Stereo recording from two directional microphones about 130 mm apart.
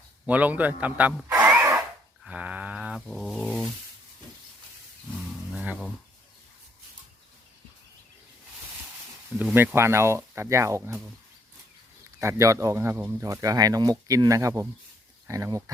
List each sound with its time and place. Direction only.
0.3 s a man's voice: 10° right (ahead or behind)
1.4 s wood: 10° right (ahead or behind)
2.2 s a sound: 10° right (ahead or behind)
5.5 s a sound: 5° right (ahead or behind)
9.4 s speech: 15° right (ahead or behind)
12.2 s speech: 20° right (ahead or behind)